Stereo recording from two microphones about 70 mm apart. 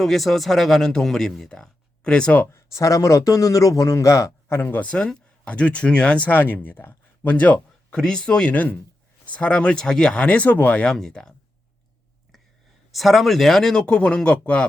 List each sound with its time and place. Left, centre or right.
0.0 s speech: centre
2.5 s speech: left
4.4 s speech: left
4.9 s speech: centre
7.9 s speech: centre
10.8 s speech: centre
12.9 s speech: centre
13.8 s speech: centre